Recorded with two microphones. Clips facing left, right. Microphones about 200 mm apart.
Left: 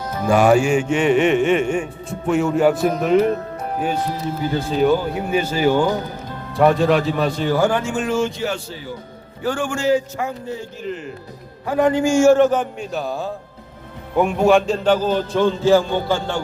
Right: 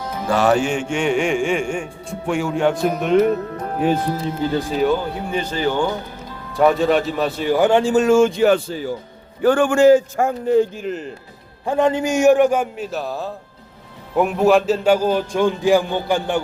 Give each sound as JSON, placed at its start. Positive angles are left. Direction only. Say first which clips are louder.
{"t": 0.3, "sound": "music", "louder": "left 3 dB", "side_deg": 10}
{"t": 4.8, "sound": "speech", "louder": "left 4 dB", "side_deg": 5}
{"t": 6.6, "sound": "music", "louder": "even", "side_deg": 0}
{"t": 7.7, "sound": "a man's voice", "louder": "right 7 dB", "side_deg": -30}
{"t": 11.6, "sound": "a man's voice", "louder": "left 1 dB", "side_deg": -25}